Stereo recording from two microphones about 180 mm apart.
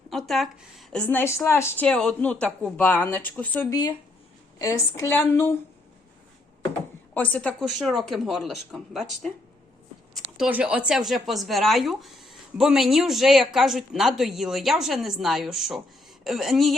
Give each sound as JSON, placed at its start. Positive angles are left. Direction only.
{"t": 0.1, "sound": "speech", "side_deg": 0}
{"t": 1.0, "sound": "speech", "side_deg": 10}
{"t": 3.7, "sound": "speech", "side_deg": 20}
{"t": 7.1, "sound": "speech", "side_deg": 10}
{"t": 10.3, "sound": "speech", "side_deg": -5}